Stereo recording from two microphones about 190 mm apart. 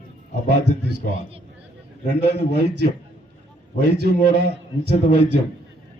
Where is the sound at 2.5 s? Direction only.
60° right (ahead or behind).